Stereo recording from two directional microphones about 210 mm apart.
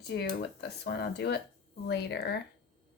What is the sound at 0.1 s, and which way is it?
Speech, 50° left (ahead or behind).